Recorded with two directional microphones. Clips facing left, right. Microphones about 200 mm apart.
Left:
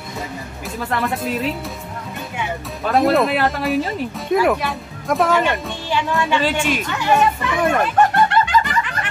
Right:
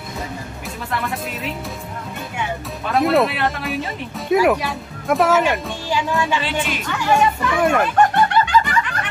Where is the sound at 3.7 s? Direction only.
Centre (ahead or behind).